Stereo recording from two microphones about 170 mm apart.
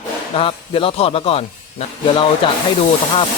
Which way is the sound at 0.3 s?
35° left (ahead or behind).